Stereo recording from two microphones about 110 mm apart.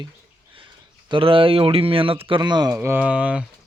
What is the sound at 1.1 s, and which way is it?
Speech, 50° right (ahead or behind).